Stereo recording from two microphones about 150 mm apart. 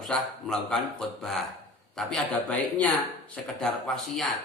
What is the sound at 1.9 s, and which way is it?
Speech, 5° left (ahead or behind).